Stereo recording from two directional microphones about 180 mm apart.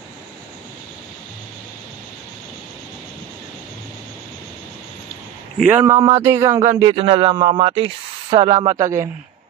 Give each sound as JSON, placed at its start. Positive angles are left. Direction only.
{"t": 5.6, "sound": "speech", "side_deg": -10}